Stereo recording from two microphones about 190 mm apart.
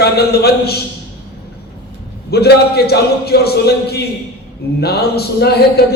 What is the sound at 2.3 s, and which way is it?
Speech, 55° left (ahead or behind).